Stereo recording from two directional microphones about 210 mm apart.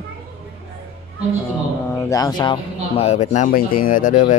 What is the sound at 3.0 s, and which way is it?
Speech, 30° left (ahead or behind).